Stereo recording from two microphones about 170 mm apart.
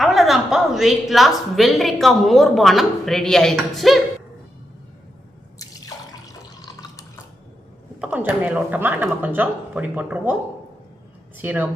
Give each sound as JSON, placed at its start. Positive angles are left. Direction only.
{"t": 0.0, "sound": "a woman's voice", "side_deg": 0}
{"t": 5.5, "sound": "drip", "side_deg": 20}
{"t": 8.0, "sound": "speech", "side_deg": -10}
{"t": 11.3, "sound": "speech", "side_deg": -10}